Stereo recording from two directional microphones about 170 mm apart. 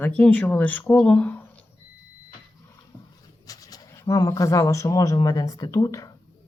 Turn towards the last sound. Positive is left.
turn(degrees=20)  # may be behind; listen again after turning